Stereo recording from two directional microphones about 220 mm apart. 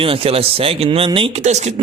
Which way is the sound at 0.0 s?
25° right (ahead or behind).